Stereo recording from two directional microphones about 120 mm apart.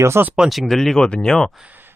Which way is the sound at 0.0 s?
20° right (ahead or behind).